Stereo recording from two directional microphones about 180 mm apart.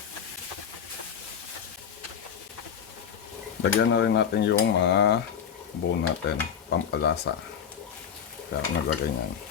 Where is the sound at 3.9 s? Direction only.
75° left (ahead or behind).